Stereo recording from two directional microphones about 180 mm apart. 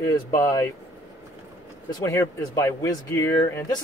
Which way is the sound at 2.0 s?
15° left (ahead or behind).